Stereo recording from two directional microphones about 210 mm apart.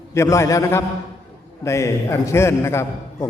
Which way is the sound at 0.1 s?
15° left (ahead or behind).